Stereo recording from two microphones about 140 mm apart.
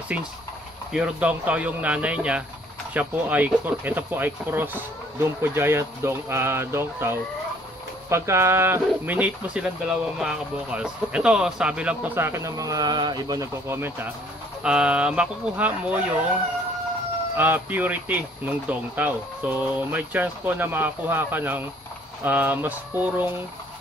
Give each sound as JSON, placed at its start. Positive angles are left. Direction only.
{"t": 0.1, "sound": "speech", "side_deg": -10}
{"t": 17.4, "sound": "speech", "side_deg": -15}